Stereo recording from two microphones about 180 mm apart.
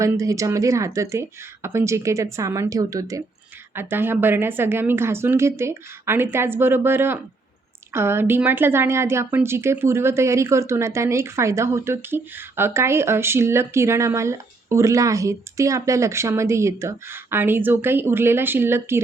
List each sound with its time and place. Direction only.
0.0 s a woman's voice: 15° right (ahead or behind)